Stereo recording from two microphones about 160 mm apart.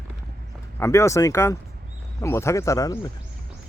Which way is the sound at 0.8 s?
15° left (ahead or behind).